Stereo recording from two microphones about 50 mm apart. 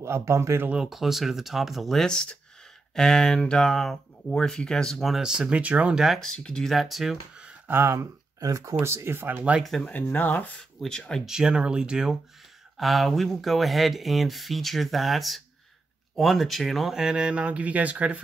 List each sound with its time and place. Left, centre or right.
0.0 s speech: right
0.7 s speech: centre
2.0 s speech: centre
5.2 s speech: centre
5.5 s speech: right
6.1 s speech: centre
7.6 s speech: right
10.1 s speech: left
10.9 s speech: centre
11.2 s speech: centre
12.7 s speech: centre
16.9 s speech: centre